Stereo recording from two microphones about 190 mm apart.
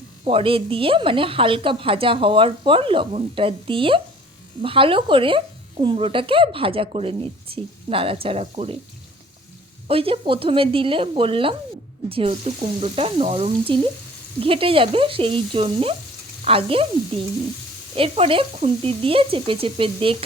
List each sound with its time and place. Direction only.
0.3 s speech: 30° right (ahead or behind)
9.8 s speech: 30° right (ahead or behind)
17.9 s speech: 30° right (ahead or behind)